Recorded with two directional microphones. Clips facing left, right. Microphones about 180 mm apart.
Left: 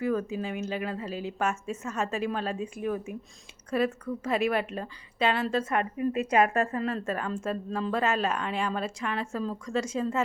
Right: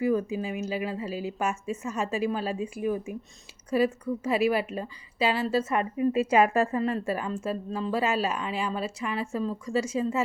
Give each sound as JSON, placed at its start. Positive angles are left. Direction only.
{"t": 0.0, "sound": "speech", "side_deg": -10}
{"t": 5.8, "sound": "a woman's voice", "side_deg": -30}
{"t": 6.8, "sound": "speech", "side_deg": -10}